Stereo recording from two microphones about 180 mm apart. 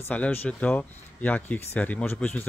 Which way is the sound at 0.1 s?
10° left (ahead or behind).